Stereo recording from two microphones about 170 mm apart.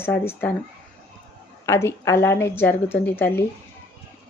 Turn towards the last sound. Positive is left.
turn(degrees=10)  # may be behind; listen again after turning